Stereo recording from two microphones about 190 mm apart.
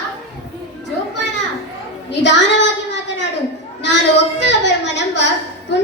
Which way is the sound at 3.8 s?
65° left (ahead or behind).